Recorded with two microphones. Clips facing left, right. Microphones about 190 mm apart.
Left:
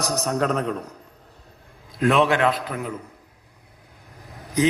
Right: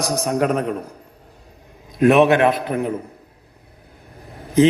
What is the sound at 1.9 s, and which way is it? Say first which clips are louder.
A man's voice: right 6 dB; 20° right (ahead or behind).